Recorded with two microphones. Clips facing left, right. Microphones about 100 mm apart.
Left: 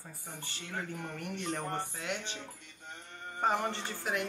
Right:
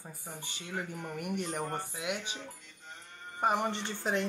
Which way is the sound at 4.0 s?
30° right (ahead or behind).